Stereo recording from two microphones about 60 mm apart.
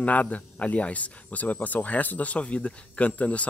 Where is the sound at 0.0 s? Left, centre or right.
Left.